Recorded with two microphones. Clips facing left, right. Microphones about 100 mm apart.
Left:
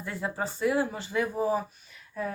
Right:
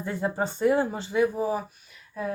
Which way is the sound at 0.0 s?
25° right (ahead or behind).